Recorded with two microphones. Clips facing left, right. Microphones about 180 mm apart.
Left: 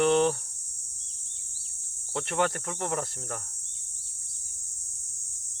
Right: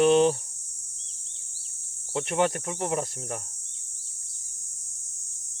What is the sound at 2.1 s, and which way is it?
Speech, 15° right (ahead or behind).